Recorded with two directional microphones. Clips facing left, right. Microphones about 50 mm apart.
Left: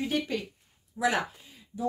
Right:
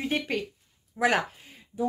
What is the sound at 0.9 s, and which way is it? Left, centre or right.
Speech, right.